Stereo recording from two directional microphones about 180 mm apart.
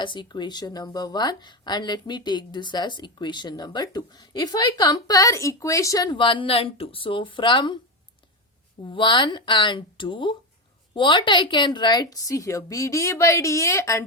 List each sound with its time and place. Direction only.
0.0 s a woman's voice: 25° left (ahead or behind)
8.8 s a woman's voice: 25° left (ahead or behind)